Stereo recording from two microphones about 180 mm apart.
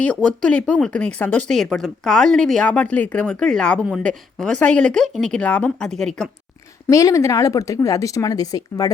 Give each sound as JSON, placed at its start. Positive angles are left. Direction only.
{"t": 0.0, "sound": "speech", "side_deg": 5}
{"t": 6.8, "sound": "a woman's voice", "side_deg": 15}